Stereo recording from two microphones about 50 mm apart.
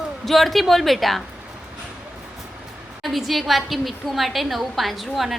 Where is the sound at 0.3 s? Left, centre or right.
Centre.